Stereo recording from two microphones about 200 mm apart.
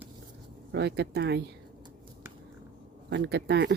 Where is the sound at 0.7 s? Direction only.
60° right (ahead or behind).